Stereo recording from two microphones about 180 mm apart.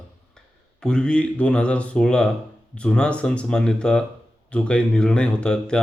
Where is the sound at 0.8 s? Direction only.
5° left (ahead or behind).